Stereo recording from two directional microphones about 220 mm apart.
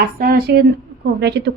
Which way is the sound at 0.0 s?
40° right (ahead or behind).